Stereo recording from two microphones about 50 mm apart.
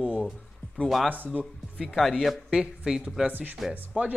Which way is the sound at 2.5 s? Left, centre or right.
Centre.